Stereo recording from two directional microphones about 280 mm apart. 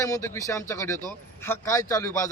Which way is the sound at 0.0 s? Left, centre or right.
Centre.